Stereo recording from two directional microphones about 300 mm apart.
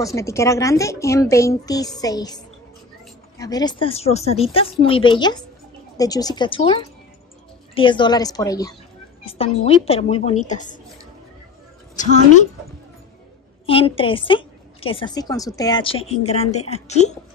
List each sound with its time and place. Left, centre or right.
0.0 s a woman's voice: centre
12.0 s a woman's voice: left
13.7 s a woman's voice: centre